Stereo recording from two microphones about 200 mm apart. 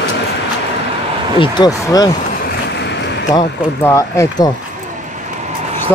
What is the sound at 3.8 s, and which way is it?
Speech, 15° left (ahead or behind).